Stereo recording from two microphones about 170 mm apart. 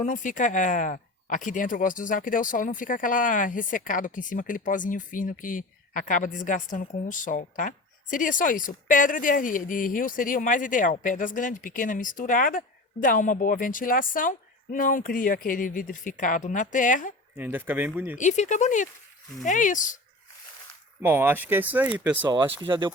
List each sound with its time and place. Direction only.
0.0 s a woman's voice: 50° left (ahead or behind)
17.3 s speech: 10° right (ahead or behind)
18.2 s a woman's voice: 45° left (ahead or behind)
21.0 s speech: 10° right (ahead or behind)
22.3 s speech: 30° right (ahead or behind)